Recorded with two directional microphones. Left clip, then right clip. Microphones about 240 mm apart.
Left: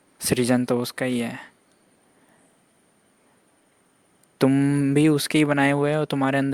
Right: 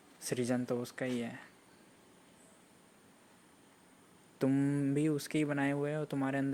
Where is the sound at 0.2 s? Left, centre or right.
Left.